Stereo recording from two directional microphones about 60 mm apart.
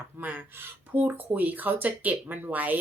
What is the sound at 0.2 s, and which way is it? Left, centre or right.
A woman's voice, right.